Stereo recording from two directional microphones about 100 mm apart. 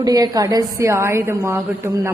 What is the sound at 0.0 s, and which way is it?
A woman's voice, 40° right (ahead or behind).